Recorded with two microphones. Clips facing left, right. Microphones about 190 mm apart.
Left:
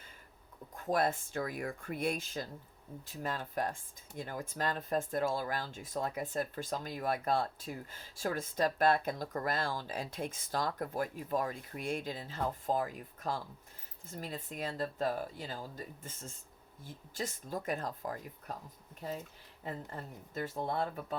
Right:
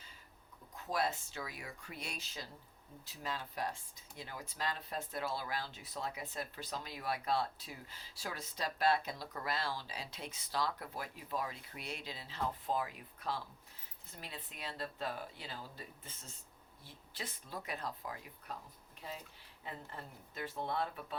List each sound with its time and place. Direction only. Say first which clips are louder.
0.8 s speech: left 5 dB; 50° left (ahead or behind)
19.6 s speech: left 6 dB; 45° left (ahead or behind)